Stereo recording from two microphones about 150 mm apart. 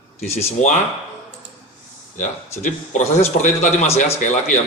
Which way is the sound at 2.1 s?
55° left (ahead or behind).